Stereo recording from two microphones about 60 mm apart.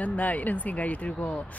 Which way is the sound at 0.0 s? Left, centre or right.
Left.